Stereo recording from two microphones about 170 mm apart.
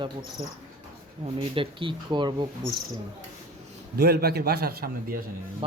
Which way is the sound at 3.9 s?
70° right (ahead or behind).